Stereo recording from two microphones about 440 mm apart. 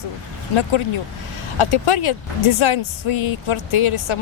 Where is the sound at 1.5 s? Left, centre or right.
Left.